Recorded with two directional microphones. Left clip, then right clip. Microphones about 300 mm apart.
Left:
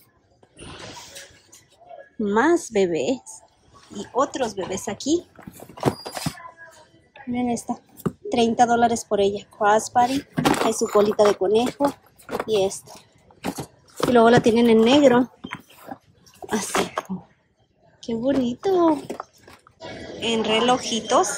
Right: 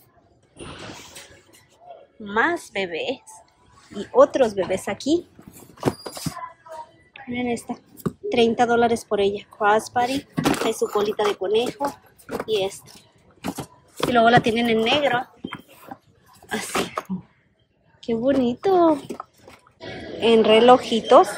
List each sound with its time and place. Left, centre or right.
2.2 s speech: centre
5.8 s horse: centre
7.2 s a woman's voice: centre
10.3 s a sound: centre
10.6 s speech: centre
11.7 s a sound: centre
12.6 s speech: centre
13.4 s a sound: centre
14.1 s speech: centre
15.4 s dog: centre
18.0 s a woman's voice: centre